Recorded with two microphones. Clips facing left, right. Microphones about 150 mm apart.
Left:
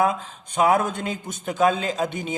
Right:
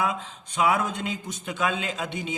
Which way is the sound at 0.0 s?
45° left (ahead or behind).